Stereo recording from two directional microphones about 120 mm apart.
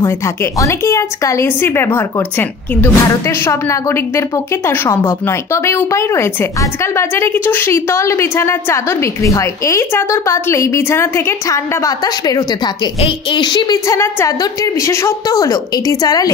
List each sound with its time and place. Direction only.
0.0 s speech: 25° left (ahead or behind)
13.8 s speech: 25° left (ahead or behind)